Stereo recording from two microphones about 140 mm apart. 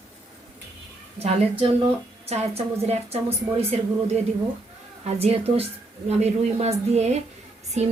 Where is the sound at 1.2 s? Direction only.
45° right (ahead or behind).